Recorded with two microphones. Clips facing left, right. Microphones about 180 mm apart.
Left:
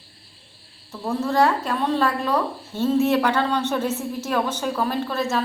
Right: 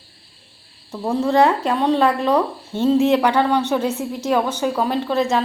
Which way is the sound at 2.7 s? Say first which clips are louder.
Right 4 dB; 15° right (ahead or behind).